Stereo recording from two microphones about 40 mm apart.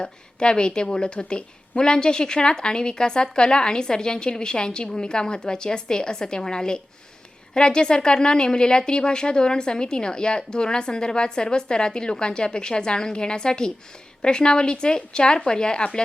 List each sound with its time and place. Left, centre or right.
0.0 s a woman's voice: left